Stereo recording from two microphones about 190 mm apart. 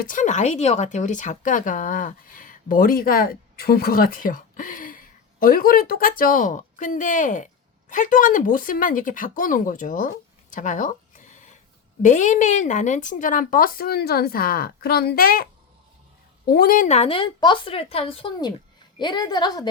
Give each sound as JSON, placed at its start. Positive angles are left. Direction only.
{"t": 0.0, "sound": "speech", "side_deg": 45}
{"t": 10.5, "sound": "a sound", "side_deg": 40}
{"t": 12.0, "sound": "speech", "side_deg": 40}
{"t": 16.5, "sound": "a woman's voice", "side_deg": 50}